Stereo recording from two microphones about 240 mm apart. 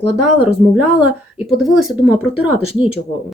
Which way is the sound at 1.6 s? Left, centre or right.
Centre.